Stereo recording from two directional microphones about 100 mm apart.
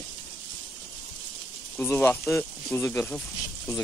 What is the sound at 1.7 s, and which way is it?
Speech, 20° left (ahead or behind).